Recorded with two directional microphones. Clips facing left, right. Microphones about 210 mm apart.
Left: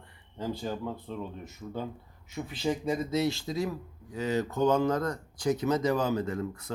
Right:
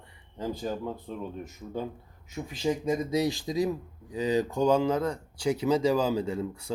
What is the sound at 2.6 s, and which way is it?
Speech, 15° right (ahead or behind).